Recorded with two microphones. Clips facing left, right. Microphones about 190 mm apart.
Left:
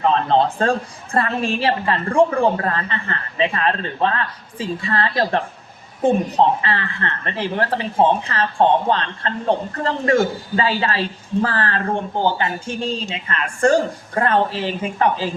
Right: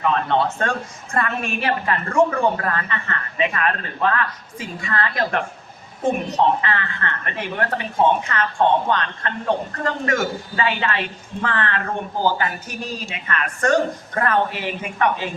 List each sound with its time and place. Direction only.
0.0 s speech: 30° left (ahead or behind)